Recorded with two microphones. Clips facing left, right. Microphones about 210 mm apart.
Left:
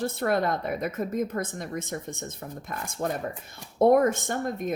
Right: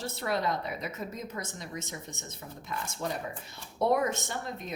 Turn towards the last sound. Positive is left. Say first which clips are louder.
# left 8 dB
turn(degrees=50)  # may be behind; listen again after turning